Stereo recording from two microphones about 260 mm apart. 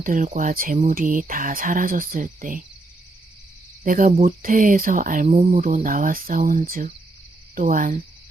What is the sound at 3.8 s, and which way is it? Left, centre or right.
Speech, right.